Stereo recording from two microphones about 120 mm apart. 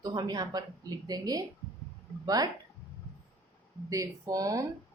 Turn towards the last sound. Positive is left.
turn(degrees=-30)  # may be behind; listen again after turning